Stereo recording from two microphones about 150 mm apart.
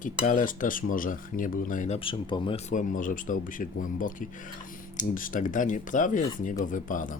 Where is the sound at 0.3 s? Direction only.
60° left (ahead or behind).